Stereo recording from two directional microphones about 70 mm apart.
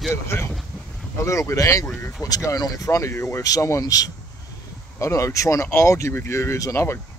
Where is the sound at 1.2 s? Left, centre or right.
Left.